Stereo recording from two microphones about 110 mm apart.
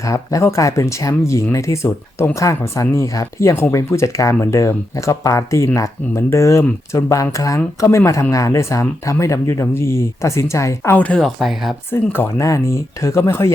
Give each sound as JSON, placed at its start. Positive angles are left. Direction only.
{"t": 0.0, "sound": "speech", "side_deg": 30}
{"t": 10.9, "sound": "speech", "side_deg": 10}
{"t": 11.3, "sound": "speech", "side_deg": 0}
{"t": 12.1, "sound": "speech", "side_deg": 25}